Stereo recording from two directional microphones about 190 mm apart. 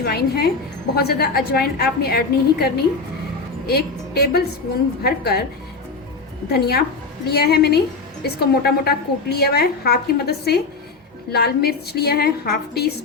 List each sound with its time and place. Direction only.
0.0 s a woman's voice: 55° left (ahead or behind)
6.5 s a woman's voice: 55° left (ahead or behind)